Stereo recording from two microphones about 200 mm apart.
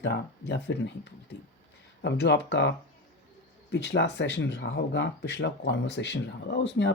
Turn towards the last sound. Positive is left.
turn(degrees=60)  # may be behind; listen again after turning